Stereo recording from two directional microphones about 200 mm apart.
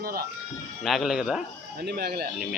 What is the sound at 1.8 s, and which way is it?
Speech, 50° right (ahead or behind).